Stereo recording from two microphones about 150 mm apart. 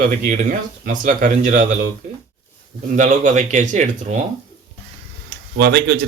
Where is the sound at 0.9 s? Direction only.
60° right (ahead or behind).